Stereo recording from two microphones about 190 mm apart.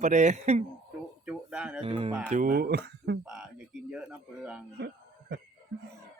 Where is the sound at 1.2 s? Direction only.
5° right (ahead or behind).